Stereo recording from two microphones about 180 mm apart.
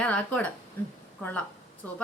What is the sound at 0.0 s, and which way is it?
Speech, 10° left (ahead or behind).